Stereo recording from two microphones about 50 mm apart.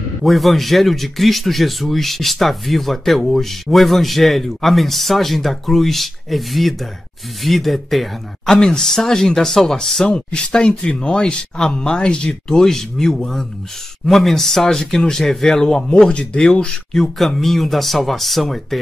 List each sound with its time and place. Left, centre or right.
0.2 s a man's voice: centre
10.0 s speech: centre
16.9 s a man's voice: centre